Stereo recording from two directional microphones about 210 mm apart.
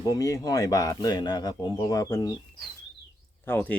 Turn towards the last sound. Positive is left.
turn(degrees=10)  # may be behind; listen again after turning